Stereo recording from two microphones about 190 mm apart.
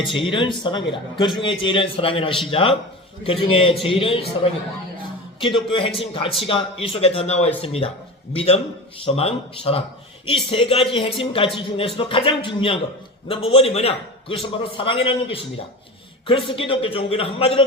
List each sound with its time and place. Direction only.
0.1 s a man's voice: 25° left (ahead or behind)
5.4 s a man's voice: 25° left (ahead or behind)